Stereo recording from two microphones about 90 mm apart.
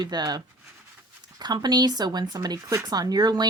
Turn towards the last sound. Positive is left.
turn(degrees=-50)  # may be behind; listen again after turning